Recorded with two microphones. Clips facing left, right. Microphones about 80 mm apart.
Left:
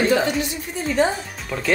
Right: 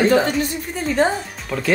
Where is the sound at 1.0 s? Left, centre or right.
Right.